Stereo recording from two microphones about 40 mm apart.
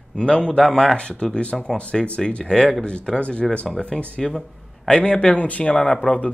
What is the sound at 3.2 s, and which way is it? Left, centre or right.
Speech, left.